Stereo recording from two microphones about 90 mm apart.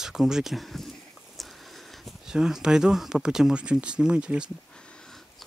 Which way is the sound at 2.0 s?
5° right (ahead or behind).